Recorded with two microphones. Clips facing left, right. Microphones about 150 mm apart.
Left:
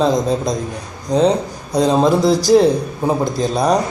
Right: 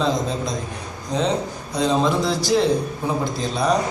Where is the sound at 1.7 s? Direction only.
40° left (ahead or behind).